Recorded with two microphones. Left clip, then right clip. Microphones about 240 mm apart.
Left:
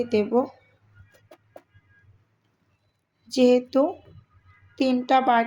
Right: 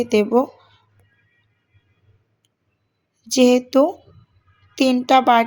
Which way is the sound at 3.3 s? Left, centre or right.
Right.